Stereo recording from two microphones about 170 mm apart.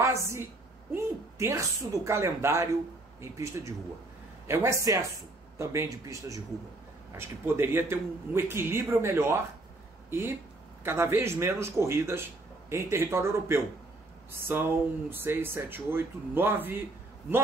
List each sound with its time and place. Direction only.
0.0 s a woman's voice: 15° right (ahead or behind)